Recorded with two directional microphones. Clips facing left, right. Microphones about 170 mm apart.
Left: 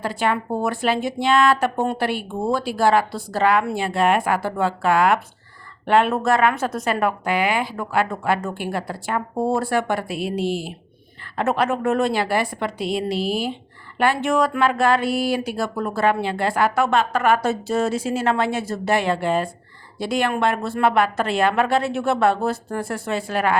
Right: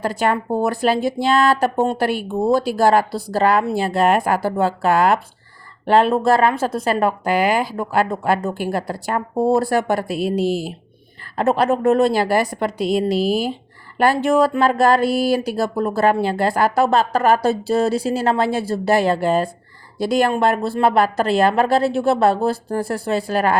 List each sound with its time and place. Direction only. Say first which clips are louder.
0.0 s speech: right 3 dB; 40° right (ahead or behind)